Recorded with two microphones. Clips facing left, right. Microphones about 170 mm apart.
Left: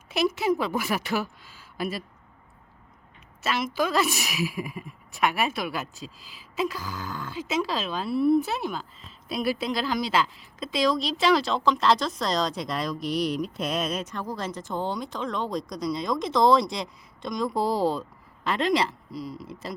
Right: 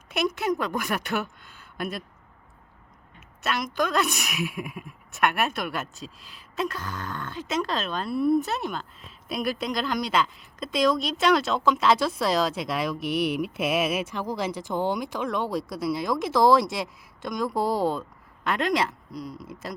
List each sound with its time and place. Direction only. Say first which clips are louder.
0.1 s a woman's voice: left 2 dB; centre (ahead or behind)
3.4 s a woman's voice: even; 5° left (ahead or behind)